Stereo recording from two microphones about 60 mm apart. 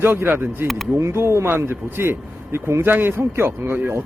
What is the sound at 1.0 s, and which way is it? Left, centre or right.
Speech, right.